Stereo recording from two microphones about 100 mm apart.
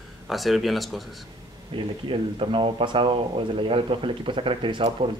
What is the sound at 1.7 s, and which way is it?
Speech, 60° right (ahead or behind).